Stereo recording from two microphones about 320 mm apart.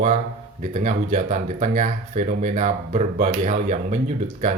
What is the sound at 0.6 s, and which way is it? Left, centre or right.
Speech, right.